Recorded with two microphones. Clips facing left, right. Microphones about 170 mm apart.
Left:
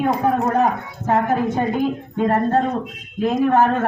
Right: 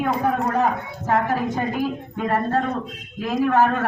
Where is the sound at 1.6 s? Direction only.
25° left (ahead or behind).